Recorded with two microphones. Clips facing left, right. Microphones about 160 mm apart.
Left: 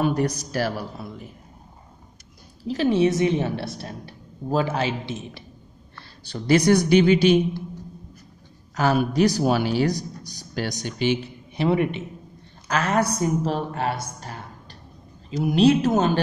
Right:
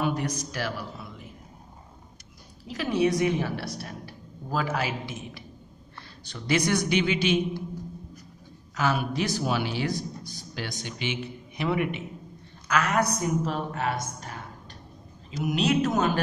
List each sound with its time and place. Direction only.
0.0 s speech: 40° left (ahead or behind)
2.7 s a woman's voice: 25° left (ahead or behind)
8.7 s a woman's voice: 40° left (ahead or behind)